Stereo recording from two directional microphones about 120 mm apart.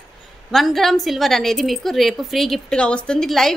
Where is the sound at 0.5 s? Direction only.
Centre (ahead or behind).